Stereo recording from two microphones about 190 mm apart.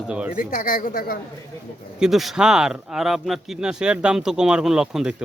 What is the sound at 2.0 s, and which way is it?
Speech, centre (ahead or behind).